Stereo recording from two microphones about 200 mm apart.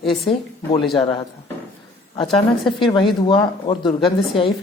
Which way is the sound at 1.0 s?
25° left (ahead or behind).